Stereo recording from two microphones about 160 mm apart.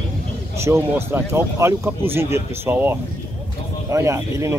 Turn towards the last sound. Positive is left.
turn(degrees=-20)  # may be behind; listen again after turning